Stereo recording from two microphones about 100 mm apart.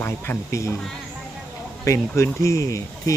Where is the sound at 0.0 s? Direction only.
25° left (ahead or behind).